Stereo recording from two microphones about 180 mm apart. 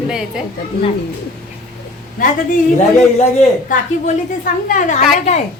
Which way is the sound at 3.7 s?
45° left (ahead or behind).